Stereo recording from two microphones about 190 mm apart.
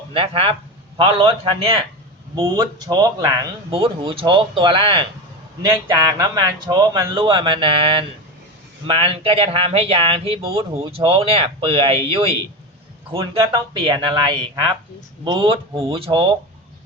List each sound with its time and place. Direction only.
0.1 s speech: 30° right (ahead or behind)